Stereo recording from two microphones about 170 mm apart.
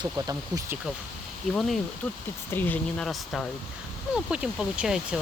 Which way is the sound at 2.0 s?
10° left (ahead or behind).